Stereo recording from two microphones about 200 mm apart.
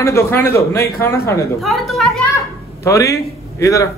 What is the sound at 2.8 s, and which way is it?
A man's voice, 15° left (ahead or behind).